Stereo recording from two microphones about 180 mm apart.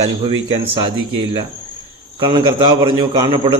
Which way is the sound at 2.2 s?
25° right (ahead or behind).